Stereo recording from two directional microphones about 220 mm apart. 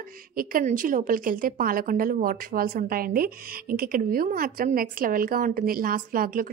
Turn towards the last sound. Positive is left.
turn(degrees=-40)  # may be behind; listen again after turning